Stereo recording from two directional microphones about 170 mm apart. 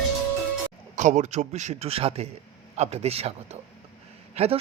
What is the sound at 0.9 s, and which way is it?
A man's voice, 45° right (ahead or behind).